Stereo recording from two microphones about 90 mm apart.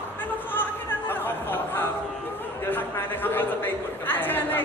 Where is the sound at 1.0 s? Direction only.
20° left (ahead or behind).